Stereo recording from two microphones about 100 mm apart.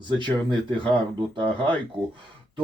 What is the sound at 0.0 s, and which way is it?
Speech, 50° right (ahead or behind).